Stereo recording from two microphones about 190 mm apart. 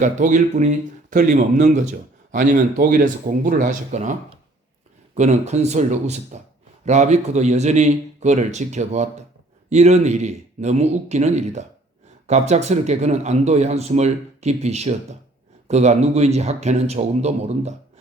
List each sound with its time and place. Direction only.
0.0 s speech: 40° right (ahead or behind)
5.1 s speech: 35° right (ahead or behind)